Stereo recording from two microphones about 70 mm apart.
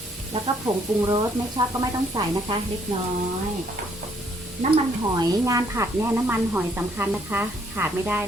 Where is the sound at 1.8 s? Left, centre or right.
Right.